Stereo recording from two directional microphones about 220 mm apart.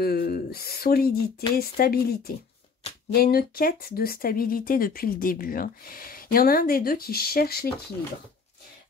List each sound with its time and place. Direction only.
0.0 s speech: 45° left (ahead or behind)